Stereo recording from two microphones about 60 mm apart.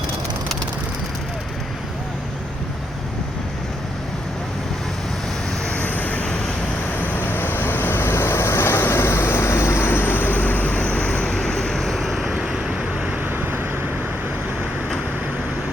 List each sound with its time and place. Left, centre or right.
5.6 s vehicle: left; by 12.2 s centre
12.2 s vehicle: centre